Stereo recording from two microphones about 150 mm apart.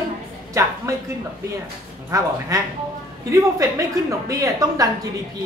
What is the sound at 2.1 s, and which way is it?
Speech, 20° right (ahead or behind).